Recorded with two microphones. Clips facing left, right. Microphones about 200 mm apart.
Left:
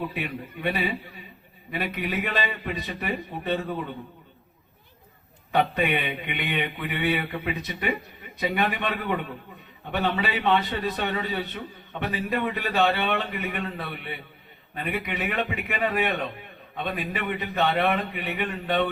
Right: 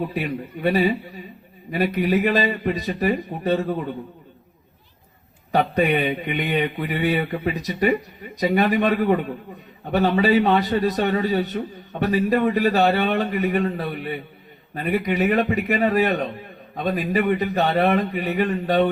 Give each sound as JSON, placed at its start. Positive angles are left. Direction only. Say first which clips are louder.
{"t": 0.1, "sound": "a man's voice", "louder": "right 6 dB", "side_deg": -40}
{"t": 5.5, "sound": "a man's voice", "louder": "right 4 dB", "side_deg": -40}